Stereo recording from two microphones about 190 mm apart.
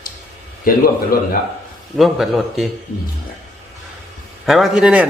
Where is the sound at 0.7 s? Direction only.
50° left (ahead or behind).